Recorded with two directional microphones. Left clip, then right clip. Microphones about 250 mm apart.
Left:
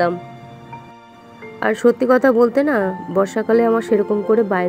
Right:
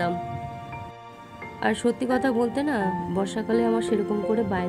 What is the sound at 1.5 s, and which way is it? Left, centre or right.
Speech, centre.